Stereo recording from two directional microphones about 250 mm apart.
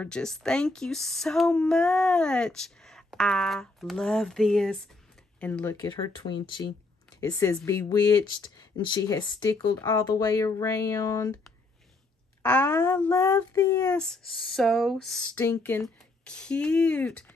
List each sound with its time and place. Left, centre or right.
0.0 s speech: centre
12.4 s speech: centre
14.0 s speech: centre